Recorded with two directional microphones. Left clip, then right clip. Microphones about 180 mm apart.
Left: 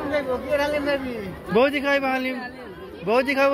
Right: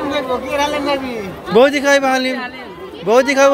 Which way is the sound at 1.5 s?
25° right (ahead or behind).